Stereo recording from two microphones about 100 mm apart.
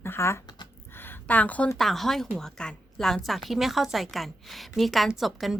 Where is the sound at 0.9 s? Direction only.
20° left (ahead or behind).